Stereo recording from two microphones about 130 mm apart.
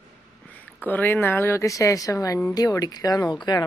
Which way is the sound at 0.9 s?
15° left (ahead or behind).